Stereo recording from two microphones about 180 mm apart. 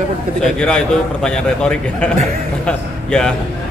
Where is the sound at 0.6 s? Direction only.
5° left (ahead or behind).